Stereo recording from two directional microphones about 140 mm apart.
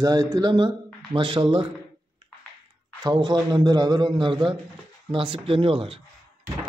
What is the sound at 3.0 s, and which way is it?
A man's voice, 30° right (ahead or behind).